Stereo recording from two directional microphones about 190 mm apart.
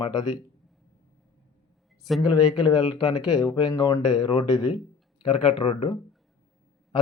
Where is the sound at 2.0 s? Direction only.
Centre (ahead or behind).